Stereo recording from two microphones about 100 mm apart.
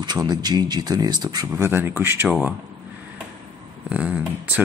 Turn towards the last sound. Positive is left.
turn(degrees=-15)  # may be behind; listen again after turning